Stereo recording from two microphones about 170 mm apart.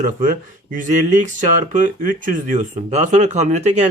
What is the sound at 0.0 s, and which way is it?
Speech, 50° right (ahead or behind).